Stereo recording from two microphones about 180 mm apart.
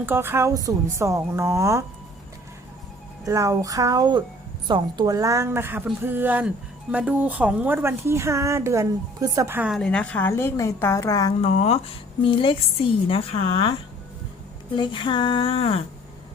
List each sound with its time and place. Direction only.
0.0 s speech: 10° right (ahead or behind)
3.2 s speech: 15° right (ahead or behind); by 11.3 s 20° left (ahead or behind)
11.3 s a woman's voice: 35° left (ahead or behind)
14.8 s a woman's voice: 25° left (ahead or behind)